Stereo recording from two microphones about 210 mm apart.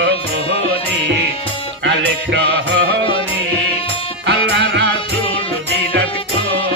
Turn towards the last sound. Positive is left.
turn(degrees=-55)  # may be behind; listen again after turning